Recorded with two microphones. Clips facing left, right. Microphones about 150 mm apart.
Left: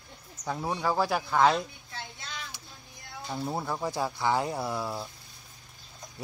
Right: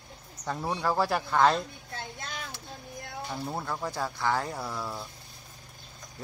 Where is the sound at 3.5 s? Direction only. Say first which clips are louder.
Left 4 dB; 10° left (ahead or behind).